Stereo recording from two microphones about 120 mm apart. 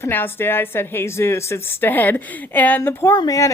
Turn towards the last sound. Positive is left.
turn(degrees=30)  # may be behind; listen again after turning